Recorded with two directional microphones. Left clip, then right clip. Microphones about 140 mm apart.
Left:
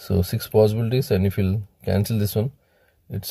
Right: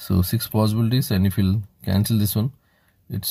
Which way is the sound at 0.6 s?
25° left (ahead or behind).